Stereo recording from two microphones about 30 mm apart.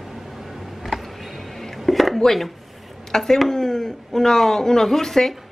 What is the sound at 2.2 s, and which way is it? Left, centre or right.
A woman's voice, centre.